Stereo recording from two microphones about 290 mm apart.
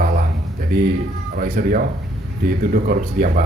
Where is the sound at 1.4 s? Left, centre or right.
Right.